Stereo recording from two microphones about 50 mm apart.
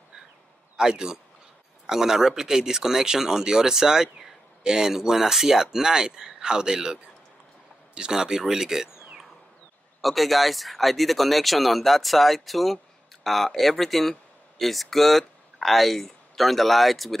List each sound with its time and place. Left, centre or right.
0.7 s speech: centre